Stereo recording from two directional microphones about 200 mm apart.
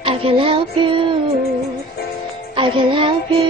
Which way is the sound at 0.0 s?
25° right (ahead or behind).